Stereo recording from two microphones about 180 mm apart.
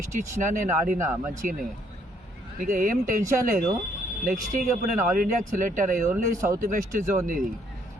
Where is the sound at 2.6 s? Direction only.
45° right (ahead or behind).